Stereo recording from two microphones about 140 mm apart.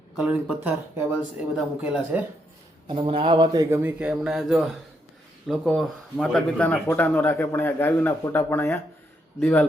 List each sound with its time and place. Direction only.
0.2 s speech: 10° right (ahead or behind)
2.8 s speech: 40° right (ahead or behind)
3.7 s speech: 15° right (ahead or behind); by 9.6 s 10° left (ahead or behind)